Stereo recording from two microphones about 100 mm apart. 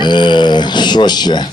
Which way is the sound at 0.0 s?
50° left (ahead or behind).